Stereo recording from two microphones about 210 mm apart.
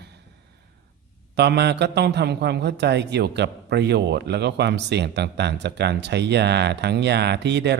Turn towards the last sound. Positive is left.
turn(degrees=-55)  # may be behind; listen again after turning